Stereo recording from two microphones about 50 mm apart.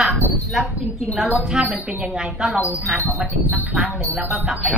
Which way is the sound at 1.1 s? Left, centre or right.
Centre.